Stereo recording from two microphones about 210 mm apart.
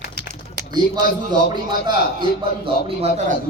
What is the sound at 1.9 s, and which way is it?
A man's voice, 25° right (ahead or behind).